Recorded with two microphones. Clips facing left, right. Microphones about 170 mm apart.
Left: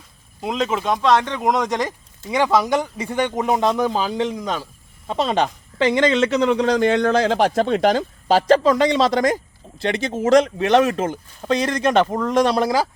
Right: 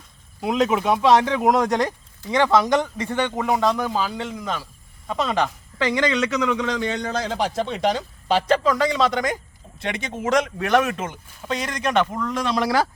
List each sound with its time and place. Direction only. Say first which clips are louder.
0.4 s speech: right 2 dB; 5° right (ahead or behind); by 6.7 s 35° left (ahead or behind)
6.7 s speech: left 8 dB; 55° left (ahead or behind); by 12.5 s 40° left (ahead or behind)